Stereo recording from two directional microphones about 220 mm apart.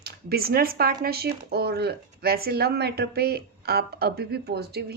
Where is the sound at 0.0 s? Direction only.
45° right (ahead or behind).